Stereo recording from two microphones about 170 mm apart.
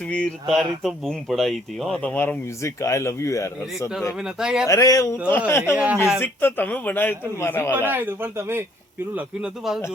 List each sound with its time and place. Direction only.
0.1 s speech: 5° left (ahead or behind)
4.2 s speech: 5° right (ahead or behind)
4.6 s speech: 20° left (ahead or behind)
5.7 s a man's voice: 10° right (ahead or behind)
6.1 s speech: 10° left (ahead or behind)
7.7 s a man's voice: 10° right (ahead or behind)